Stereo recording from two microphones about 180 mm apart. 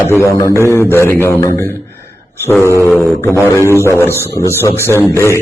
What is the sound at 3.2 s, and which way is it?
Mantra, 15° left (ahead or behind).